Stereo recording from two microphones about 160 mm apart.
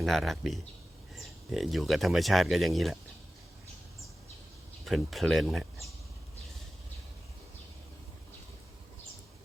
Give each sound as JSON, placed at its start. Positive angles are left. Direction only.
{"t": 0.0, "sound": "speech", "side_deg": 0}
{"t": 4.9, "sound": "speech", "side_deg": 0}